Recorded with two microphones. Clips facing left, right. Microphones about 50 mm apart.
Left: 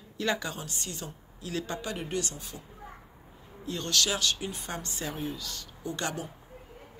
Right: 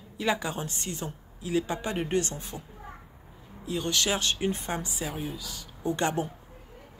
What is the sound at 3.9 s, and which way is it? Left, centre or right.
Speech, right.